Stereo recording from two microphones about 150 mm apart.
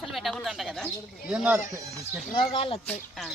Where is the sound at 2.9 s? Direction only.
Centre (ahead or behind).